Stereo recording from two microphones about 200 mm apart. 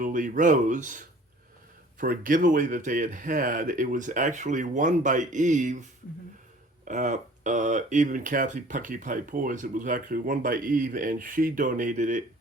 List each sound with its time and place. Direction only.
0.0 s speech: 40° right (ahead or behind)
2.0 s speech: 45° right (ahead or behind)
6.8 s speech: 40° right (ahead or behind)